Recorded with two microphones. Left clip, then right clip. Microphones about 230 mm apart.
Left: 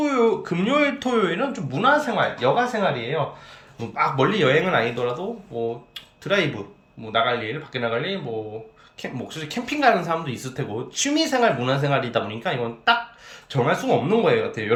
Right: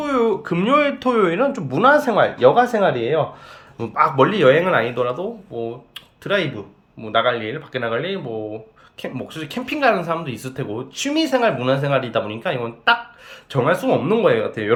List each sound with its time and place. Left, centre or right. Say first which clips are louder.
0.0 s speech: right 1 dB; centre; by 3.2 s right
3.8 s speech: right 5 dB; centre